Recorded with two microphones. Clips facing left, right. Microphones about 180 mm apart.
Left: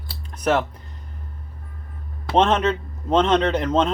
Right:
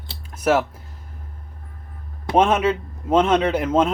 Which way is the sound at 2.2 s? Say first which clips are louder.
Right 1 dB; 10° right (ahead or behind).